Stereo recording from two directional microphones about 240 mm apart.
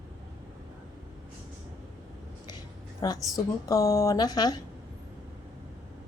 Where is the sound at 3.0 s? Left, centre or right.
Centre.